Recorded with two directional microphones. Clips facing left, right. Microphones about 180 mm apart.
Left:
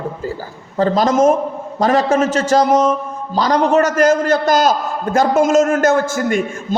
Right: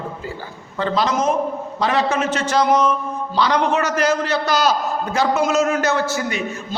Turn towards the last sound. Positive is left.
turn(degrees=50)  # may be behind; listen again after turning